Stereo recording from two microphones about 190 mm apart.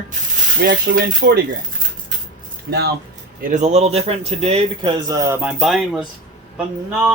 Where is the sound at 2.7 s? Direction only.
55° right (ahead or behind).